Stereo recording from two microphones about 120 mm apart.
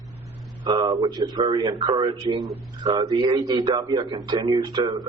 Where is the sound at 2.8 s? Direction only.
25° right (ahead or behind).